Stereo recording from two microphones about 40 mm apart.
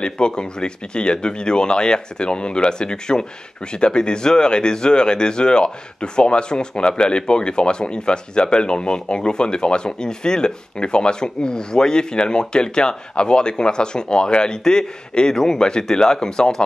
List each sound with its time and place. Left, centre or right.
0.0 s speech: left